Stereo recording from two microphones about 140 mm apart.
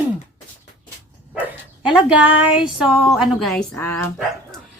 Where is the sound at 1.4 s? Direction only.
10° right (ahead or behind).